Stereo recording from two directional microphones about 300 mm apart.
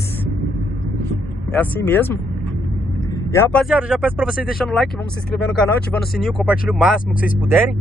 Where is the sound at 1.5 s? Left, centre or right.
Centre.